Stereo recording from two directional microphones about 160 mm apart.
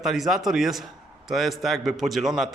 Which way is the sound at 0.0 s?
Centre (ahead or behind).